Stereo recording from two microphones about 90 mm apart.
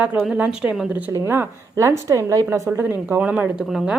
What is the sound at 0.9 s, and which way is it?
Speech, 20° right (ahead or behind).